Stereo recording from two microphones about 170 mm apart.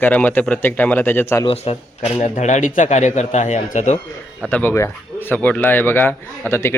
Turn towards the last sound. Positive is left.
turn(degrees=15)  # may be behind; listen again after turning